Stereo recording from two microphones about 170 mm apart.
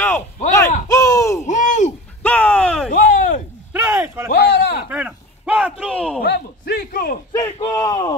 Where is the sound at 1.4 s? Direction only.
45° left (ahead or behind).